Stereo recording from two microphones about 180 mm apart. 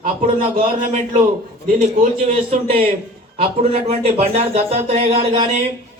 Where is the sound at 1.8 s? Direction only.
40° right (ahead or behind).